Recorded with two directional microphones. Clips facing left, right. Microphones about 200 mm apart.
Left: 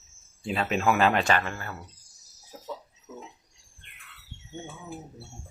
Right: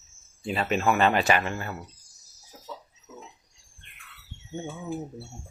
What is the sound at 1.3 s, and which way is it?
Speech, 20° right (ahead or behind).